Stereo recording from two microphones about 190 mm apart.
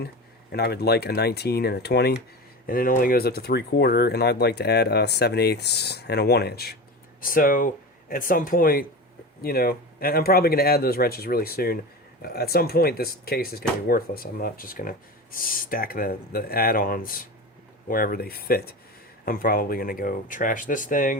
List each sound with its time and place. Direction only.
0.5 s speech: 55° left (ahead or behind)